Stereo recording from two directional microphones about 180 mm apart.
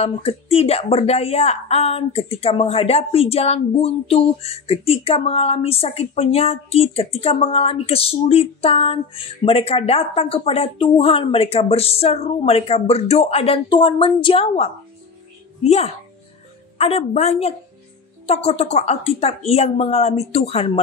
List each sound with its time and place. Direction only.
0.0 s a woman's voice: 35° left (ahead or behind)